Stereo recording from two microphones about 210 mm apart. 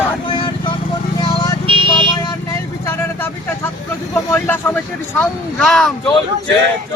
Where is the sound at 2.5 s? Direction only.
10° left (ahead or behind).